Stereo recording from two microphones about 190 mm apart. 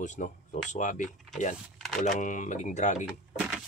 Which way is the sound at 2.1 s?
40° left (ahead or behind).